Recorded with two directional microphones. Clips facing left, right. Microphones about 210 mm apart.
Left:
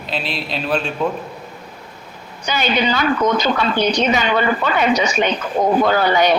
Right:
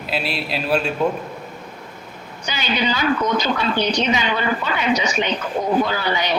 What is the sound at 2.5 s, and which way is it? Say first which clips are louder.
Speech: left 4 dB; 50° left (ahead or behind).